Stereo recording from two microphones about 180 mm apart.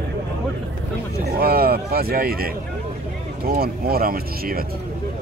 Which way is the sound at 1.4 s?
55° right (ahead or behind).